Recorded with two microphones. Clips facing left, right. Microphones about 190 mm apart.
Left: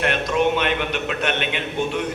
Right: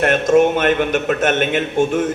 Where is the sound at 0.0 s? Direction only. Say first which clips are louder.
Right 7 dB; 50° right (ahead or behind).